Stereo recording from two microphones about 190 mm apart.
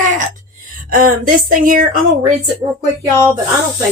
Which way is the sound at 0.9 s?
50° right (ahead or behind).